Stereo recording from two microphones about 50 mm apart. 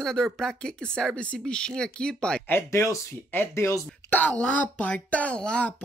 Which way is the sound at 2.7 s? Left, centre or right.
Left.